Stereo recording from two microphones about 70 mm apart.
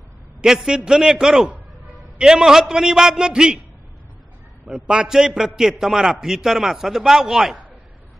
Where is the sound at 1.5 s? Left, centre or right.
Right.